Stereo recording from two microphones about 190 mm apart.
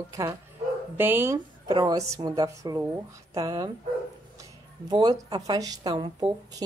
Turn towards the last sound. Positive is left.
turn(degrees=-20)  # may be behind; listen again after turning